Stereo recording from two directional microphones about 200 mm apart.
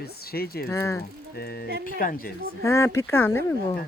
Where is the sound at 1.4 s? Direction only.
50° left (ahead or behind).